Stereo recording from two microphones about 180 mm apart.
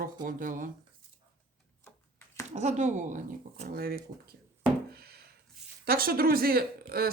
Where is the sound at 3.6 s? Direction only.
55° right (ahead or behind).